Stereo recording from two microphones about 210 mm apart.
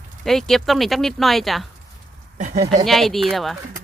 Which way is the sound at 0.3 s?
Centre (ahead or behind).